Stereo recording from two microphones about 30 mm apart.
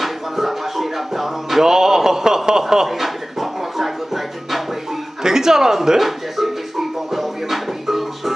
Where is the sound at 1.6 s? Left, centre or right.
Centre.